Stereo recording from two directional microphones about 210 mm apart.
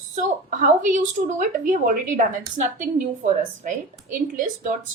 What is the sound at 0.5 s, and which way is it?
A woman's voice, 35° right (ahead or behind).